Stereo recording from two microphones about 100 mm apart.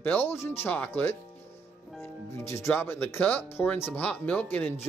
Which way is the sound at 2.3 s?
25° left (ahead or behind).